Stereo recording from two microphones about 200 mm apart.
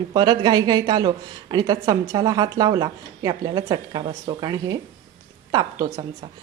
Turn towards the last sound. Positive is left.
turn(degrees=-20)  # may be behind; listen again after turning